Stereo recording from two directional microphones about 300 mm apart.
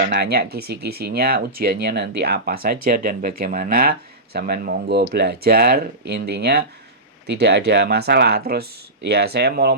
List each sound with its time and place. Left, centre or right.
0.1 s speech: right